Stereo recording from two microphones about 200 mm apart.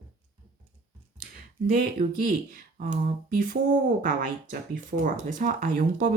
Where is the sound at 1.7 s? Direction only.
45° right (ahead or behind).